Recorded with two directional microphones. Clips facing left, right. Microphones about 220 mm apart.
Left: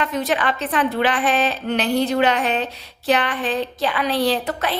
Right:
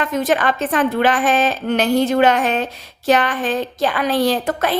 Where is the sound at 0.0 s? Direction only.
45° right (ahead or behind).